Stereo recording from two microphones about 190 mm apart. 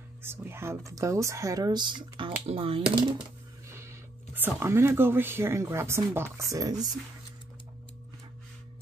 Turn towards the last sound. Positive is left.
turn(degrees=-20)  # may be behind; listen again after turning